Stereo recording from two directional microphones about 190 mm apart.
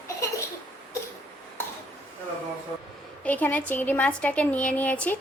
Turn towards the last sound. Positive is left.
turn(degrees=10)  # may be behind; listen again after turning